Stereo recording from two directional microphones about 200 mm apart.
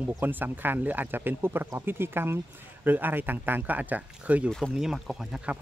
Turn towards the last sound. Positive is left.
turn(degrees=-5)  # may be behind; listen again after turning